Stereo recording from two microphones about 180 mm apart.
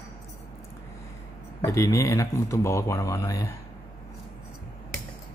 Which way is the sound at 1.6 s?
15° left (ahead or behind).